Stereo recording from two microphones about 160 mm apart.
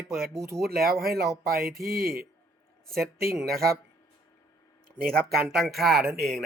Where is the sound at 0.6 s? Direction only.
70° right (ahead or behind).